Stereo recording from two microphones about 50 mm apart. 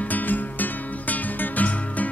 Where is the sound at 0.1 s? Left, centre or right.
Left.